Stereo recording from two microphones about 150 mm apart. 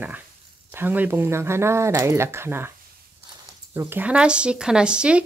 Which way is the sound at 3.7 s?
10° right (ahead or behind).